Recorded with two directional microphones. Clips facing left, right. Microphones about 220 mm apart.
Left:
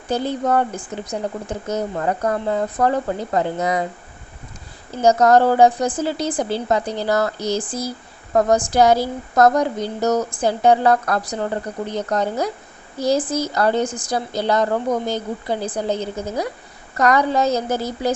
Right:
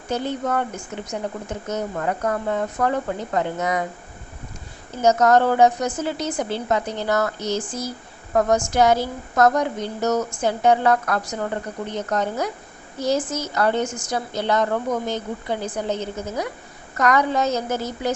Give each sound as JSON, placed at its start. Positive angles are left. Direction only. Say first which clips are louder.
{"t": 0.1, "sound": "a woman's voice", "louder": "left 4 dB", "side_deg": 35}
{"t": 5.0, "sound": "a woman's voice", "louder": "left 3 dB", "side_deg": 35}